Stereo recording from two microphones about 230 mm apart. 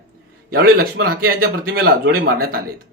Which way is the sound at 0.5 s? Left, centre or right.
Right.